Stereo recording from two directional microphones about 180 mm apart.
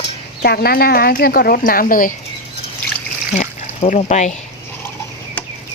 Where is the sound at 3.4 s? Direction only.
40° left (ahead or behind).